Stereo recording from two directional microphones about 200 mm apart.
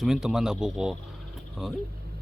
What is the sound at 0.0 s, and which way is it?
Speech, 5° right (ahead or behind).